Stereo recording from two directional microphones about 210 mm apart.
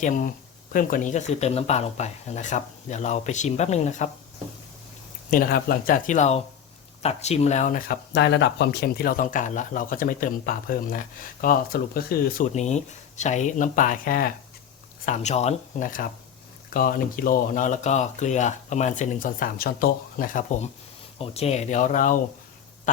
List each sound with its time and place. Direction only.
0.0 s speech: 40° left (ahead or behind)
5.3 s speech: 45° left (ahead or behind)
8.1 s speech: 55° left (ahead or behind)
12.5 s speech: 35° left (ahead or behind)